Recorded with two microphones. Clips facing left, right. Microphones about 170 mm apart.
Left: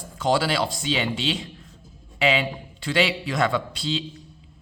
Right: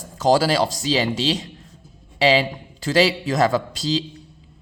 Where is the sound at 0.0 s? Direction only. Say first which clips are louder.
Right 5 dB; 40° right (ahead or behind).